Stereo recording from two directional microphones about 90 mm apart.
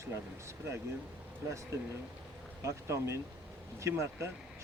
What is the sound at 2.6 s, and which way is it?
Speech, 35° right (ahead or behind).